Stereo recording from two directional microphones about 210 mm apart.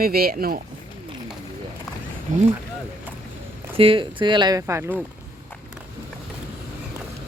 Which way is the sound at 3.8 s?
25° right (ahead or behind).